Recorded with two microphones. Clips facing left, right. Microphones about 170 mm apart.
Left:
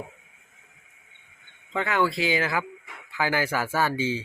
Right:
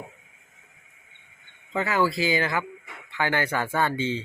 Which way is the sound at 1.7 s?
5° right (ahead or behind).